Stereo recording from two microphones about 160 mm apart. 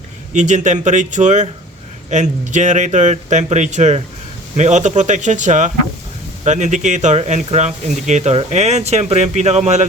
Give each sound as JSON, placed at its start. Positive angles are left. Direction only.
{"t": 0.3, "sound": "speech", "side_deg": -50}